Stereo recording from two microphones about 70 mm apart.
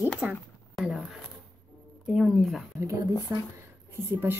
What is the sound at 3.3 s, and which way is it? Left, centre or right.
Speech, right.